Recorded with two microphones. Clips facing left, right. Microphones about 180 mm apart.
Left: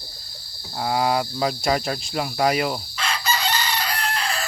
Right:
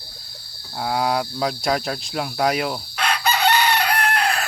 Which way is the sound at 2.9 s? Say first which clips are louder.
Right 4 dB; 65° right (ahead or behind).